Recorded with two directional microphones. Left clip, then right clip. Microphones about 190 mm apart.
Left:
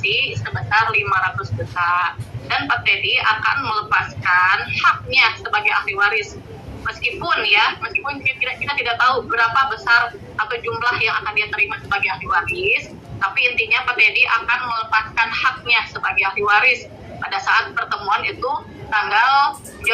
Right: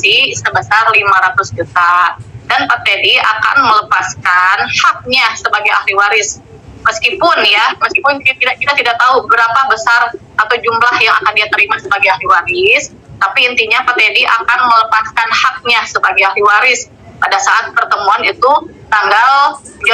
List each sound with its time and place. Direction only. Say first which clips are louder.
0.0 s a woman's voice: right 10 dB; 50° right (ahead or behind)